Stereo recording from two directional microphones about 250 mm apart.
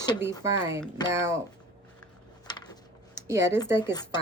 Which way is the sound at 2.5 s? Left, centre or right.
Centre.